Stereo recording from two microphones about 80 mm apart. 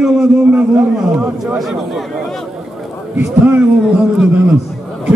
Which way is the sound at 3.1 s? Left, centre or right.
Right.